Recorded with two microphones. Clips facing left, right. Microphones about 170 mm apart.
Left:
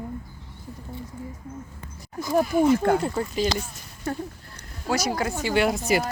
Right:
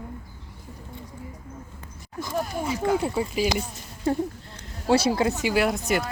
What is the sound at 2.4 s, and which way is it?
Speech, 55° left (ahead or behind).